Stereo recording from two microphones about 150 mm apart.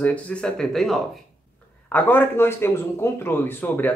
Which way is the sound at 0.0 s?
10° left (ahead or behind).